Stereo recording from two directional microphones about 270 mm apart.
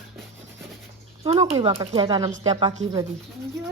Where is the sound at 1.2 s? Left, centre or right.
Right.